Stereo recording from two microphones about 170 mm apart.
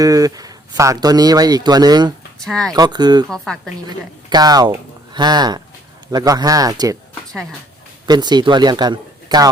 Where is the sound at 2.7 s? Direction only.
25° right (ahead or behind).